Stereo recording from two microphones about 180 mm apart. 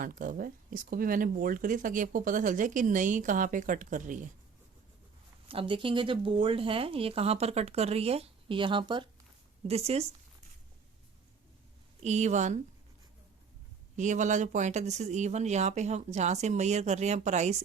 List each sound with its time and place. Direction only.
0.0 s speech: 50° right (ahead or behind)
5.5 s speech: 30° right (ahead or behind)
12.0 s speech: 40° right (ahead or behind)
13.9 s speech: 40° right (ahead or behind)